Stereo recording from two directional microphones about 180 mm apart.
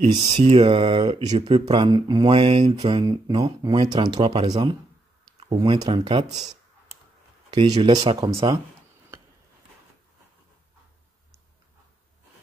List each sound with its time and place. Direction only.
0.1 s speech: 25° right (ahead or behind)
7.5 s speech: 25° right (ahead or behind)